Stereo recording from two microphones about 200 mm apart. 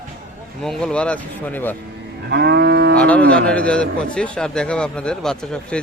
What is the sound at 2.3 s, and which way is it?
Cattle, 55° right (ahead or behind).